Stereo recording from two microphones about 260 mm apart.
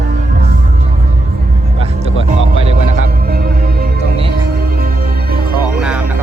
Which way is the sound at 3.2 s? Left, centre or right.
Right.